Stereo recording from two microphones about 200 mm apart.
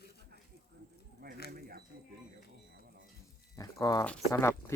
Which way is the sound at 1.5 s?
50° right (ahead or behind).